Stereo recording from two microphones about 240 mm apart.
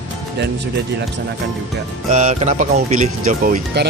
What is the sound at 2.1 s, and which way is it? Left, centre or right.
Speech, right.